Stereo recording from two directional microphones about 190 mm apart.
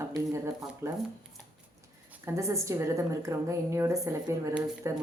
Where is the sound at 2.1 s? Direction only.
15° right (ahead or behind).